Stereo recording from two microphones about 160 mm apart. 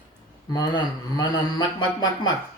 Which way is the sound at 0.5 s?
25° left (ahead or behind).